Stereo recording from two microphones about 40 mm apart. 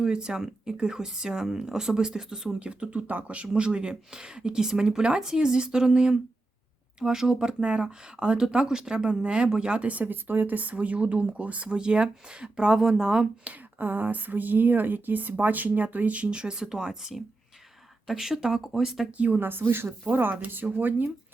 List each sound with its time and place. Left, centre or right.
0.0 s speech: right
2.6 s speech: right
3.1 s speech: right
9.9 s speech: right; by 13.2 s centre
13.7 s a woman's voice: right
16.3 s speech: right; by 19.0 s centre
19.1 s speech: right
19.4 s speech: right
20.7 s a woman's voice: right